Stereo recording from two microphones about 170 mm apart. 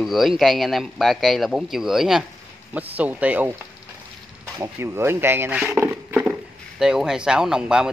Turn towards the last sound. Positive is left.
turn(degrees=-5)  # may be behind; listen again after turning